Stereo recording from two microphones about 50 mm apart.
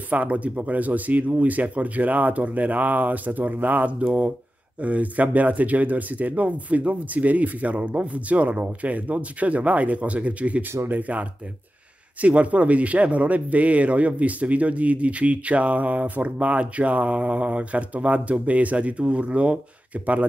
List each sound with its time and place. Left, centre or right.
0.1 s speech: right